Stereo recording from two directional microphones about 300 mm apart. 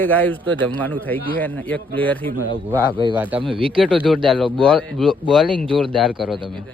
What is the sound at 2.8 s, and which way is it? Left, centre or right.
Speech, centre.